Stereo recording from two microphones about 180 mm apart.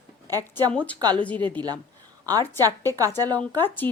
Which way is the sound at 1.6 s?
25° right (ahead or behind).